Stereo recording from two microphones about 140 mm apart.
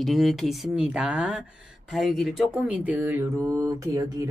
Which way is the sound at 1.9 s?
Centre (ahead or behind).